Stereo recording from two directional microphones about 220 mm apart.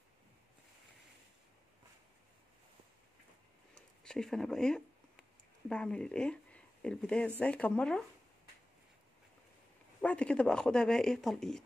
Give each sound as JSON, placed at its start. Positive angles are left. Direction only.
{"t": 3.7, "sound": "a sound", "side_deg": 5}
{"t": 5.7, "sound": "speech", "side_deg": 5}
{"t": 10.0, "sound": "speech", "side_deg": 5}